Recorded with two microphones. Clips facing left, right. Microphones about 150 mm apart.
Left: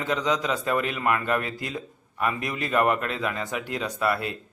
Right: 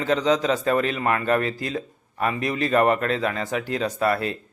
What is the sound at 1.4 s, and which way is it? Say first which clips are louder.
Speech: right 5 dB; 10° left (ahead or behind).